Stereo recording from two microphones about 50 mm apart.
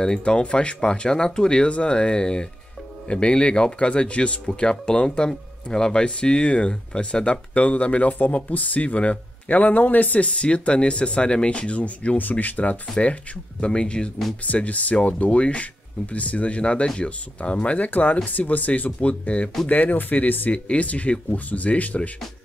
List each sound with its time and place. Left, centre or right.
0.0 s speech: centre
14.4 s speech: left
20.5 s speech: left